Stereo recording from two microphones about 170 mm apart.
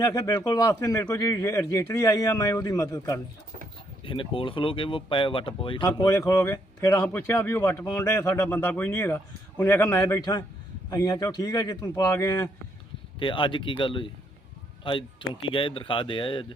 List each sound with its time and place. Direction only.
0.0 s speech: 20° left (ahead or behind)